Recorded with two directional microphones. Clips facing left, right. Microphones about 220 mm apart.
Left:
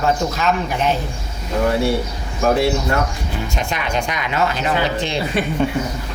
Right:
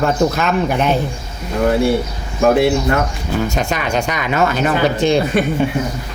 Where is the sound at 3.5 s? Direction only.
45° right (ahead or behind).